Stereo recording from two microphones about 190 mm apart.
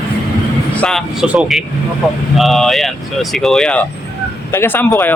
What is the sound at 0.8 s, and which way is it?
Speech, centre (ahead or behind).